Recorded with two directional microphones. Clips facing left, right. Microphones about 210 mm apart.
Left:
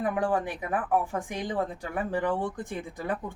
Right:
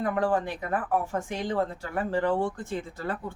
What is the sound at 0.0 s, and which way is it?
A woman's voice, 15° left (ahead or behind).